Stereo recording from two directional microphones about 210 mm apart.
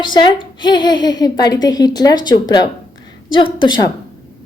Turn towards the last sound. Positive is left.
turn(degrees=20)  # may be behind; listen again after turning